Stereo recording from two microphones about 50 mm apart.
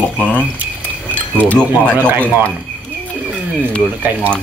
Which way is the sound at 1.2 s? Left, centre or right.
Left.